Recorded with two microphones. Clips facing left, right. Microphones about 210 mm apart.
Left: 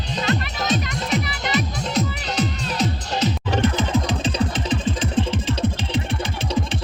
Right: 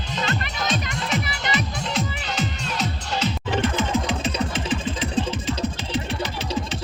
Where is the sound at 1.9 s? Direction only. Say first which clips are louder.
Left 5 dB; 35° left (ahead or behind).